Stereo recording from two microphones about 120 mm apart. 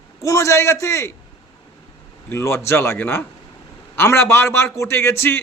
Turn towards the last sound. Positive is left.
turn(degrees=20)  # may be behind; listen again after turning